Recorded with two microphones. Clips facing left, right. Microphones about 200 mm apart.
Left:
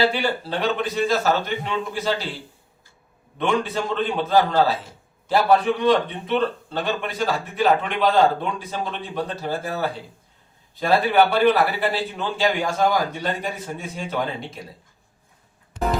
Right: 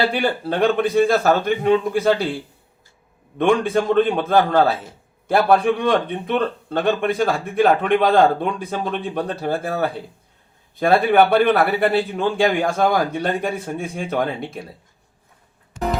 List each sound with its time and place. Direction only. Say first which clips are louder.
0.1 s a man's voice: right 3 dB; 55° right (ahead or behind)
3.3 s a man's voice: right 6 dB; 50° right (ahead or behind)